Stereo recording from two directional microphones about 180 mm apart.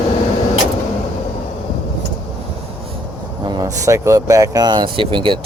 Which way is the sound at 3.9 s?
15° right (ahead or behind).